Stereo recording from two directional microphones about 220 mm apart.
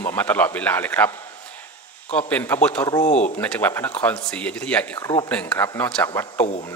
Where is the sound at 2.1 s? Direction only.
10° left (ahead or behind).